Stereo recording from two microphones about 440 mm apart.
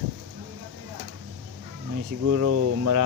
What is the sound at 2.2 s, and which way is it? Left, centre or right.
Speech, right.